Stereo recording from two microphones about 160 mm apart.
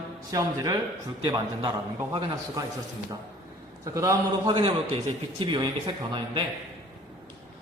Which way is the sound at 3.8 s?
20° right (ahead or behind).